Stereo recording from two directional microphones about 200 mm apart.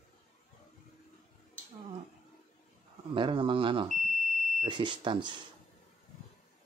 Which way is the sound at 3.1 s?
25° right (ahead or behind).